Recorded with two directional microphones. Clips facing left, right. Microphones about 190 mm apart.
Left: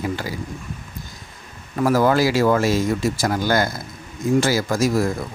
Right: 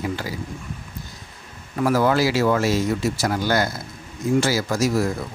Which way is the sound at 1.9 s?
45° left (ahead or behind).